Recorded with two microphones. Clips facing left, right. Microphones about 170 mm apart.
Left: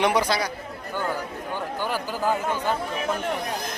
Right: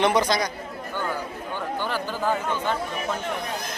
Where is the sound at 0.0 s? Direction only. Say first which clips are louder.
Right 1 dB; 10° left (ahead or behind).